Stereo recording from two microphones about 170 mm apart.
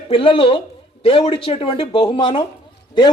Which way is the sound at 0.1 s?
30° left (ahead or behind).